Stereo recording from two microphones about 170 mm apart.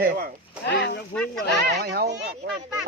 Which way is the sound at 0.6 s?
85° left.